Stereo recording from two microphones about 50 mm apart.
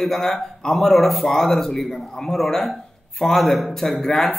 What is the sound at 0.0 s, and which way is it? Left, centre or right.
A man's voice, centre.